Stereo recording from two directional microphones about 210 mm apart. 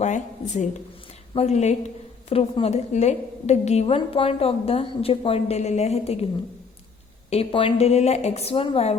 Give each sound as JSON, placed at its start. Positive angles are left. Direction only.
{"t": 0.0, "sound": "a woman's voice", "side_deg": 35}
{"t": 7.3, "sound": "a woman's voice", "side_deg": 25}